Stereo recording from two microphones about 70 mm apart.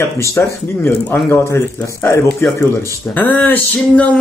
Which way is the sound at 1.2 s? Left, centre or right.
Left.